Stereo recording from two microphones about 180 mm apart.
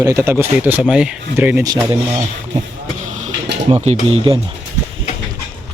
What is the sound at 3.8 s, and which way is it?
Speech, 35° right (ahead or behind).